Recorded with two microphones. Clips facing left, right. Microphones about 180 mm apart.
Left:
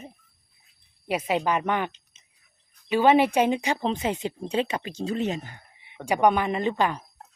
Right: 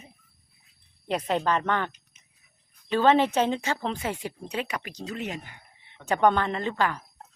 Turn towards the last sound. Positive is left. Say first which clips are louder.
# left 3 dB
turn(degrees=20)  # may be behind; listen again after turning